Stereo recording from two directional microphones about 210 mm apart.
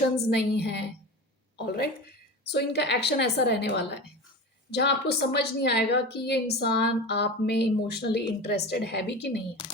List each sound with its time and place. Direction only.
0.3 s a woman's voice: 50° left (ahead or behind)
9.6 s speech: 25° left (ahead or behind)